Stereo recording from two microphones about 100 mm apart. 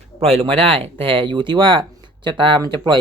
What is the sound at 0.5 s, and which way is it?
Speech, 75° right (ahead or behind).